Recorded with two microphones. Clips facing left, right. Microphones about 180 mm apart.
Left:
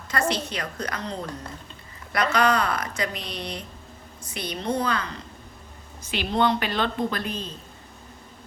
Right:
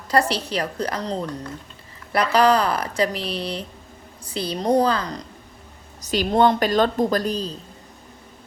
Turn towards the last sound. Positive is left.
turn(degrees=-35)  # may be behind; listen again after turning